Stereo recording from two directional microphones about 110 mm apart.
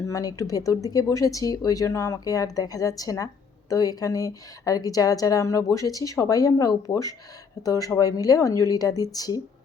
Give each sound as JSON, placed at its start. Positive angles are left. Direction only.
{"t": 0.0, "sound": "a woman's voice", "side_deg": 30}